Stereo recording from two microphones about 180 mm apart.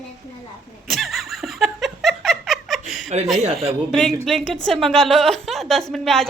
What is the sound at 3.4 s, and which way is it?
Speech, 35° right (ahead or behind).